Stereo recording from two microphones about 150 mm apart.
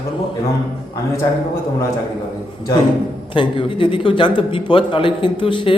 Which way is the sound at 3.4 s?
35° left (ahead or behind).